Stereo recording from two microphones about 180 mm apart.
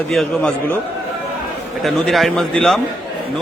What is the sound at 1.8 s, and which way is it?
A man's voice, centre (ahead or behind).